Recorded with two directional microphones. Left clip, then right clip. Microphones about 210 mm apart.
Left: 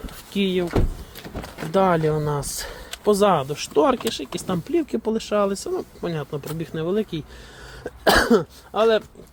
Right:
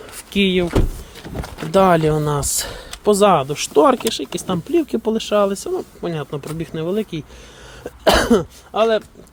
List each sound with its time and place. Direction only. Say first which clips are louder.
0.3 s speech: right 5 dB; 25° right (ahead or behind); by 9.0 s 10° right (ahead or behind)